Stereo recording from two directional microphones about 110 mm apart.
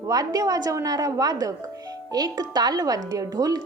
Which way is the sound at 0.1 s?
35° right (ahead or behind).